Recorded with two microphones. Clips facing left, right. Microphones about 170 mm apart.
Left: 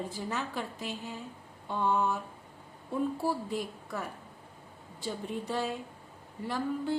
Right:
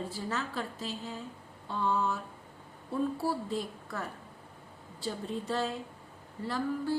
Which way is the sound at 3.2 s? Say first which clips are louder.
Even; 15° left (ahead or behind).